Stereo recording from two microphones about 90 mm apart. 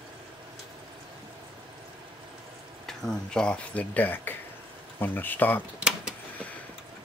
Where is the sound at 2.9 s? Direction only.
5° left (ahead or behind).